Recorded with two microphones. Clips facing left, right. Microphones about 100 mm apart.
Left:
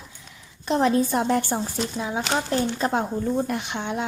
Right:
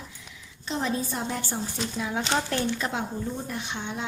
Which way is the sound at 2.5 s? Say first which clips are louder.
Left 5 dB; 40° left (ahead or behind).